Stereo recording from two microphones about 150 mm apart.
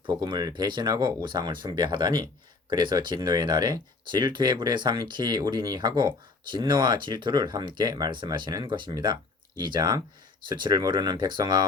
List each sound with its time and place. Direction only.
0.0 s speech: 30° right (ahead or behind)